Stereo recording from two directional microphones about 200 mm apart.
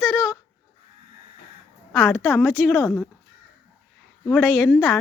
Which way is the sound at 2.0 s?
15° left (ahead or behind).